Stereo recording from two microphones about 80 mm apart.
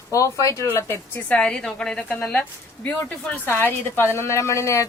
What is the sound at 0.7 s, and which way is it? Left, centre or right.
Speech, left.